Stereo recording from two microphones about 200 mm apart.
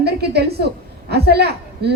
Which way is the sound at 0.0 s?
55° right (ahead or behind).